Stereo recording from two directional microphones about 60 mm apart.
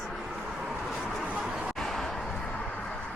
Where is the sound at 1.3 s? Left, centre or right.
Centre.